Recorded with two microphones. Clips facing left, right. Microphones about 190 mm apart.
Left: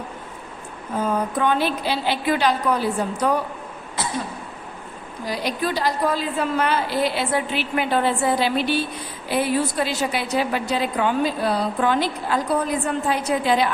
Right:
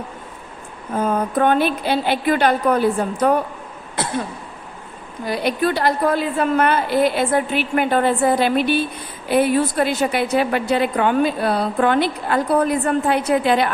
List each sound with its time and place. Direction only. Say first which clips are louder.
0.9 s a woman's voice: right 4 dB; 55° right (ahead or behind)
5.2 s a woman's voice: right 5 dB; 55° right (ahead or behind)